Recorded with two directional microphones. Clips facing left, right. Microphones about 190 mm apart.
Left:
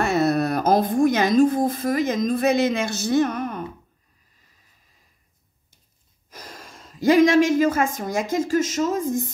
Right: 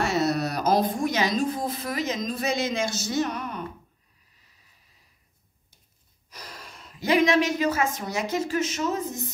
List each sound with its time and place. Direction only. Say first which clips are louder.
0.0 s speech: left 4 dB; 55° left (ahead or behind)
6.3 s a woman's voice: left 2 dB; 45° left (ahead or behind)